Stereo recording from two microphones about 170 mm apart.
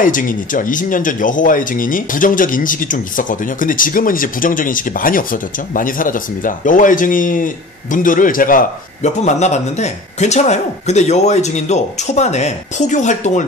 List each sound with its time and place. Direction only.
0.0 s speech: 50° left (ahead or behind)